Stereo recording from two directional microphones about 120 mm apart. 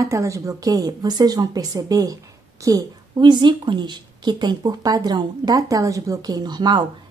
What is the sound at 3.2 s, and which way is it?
Speech, 40° right (ahead or behind).